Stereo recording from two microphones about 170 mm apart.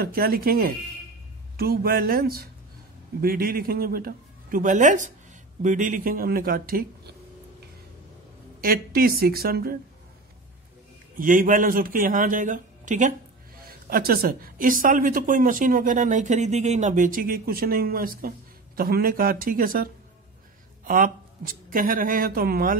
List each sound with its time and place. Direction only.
0.0 s speech: 60° right (ahead or behind)
8.5 s speech: 60° right (ahead or behind)
11.1 s speech: 50° right (ahead or behind)
13.6 s speech: 60° right (ahead or behind)